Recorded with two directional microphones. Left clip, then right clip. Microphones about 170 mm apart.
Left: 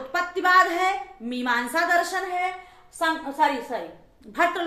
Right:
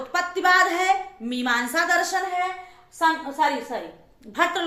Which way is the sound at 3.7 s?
10° right (ahead or behind).